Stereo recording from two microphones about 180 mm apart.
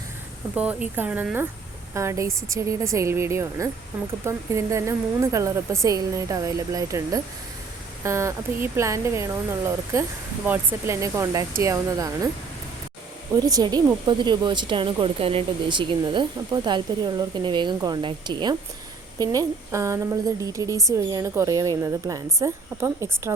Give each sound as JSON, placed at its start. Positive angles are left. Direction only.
{"t": 0.5, "sound": "a woman's voice", "side_deg": -5}
{"t": 13.5, "sound": "a woman's voice", "side_deg": -20}